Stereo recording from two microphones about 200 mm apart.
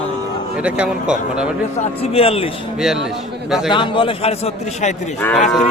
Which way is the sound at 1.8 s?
30° left (ahead or behind).